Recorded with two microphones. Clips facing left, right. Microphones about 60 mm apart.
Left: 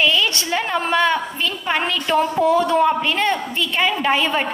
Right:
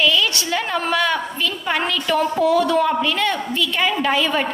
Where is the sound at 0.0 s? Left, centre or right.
Left.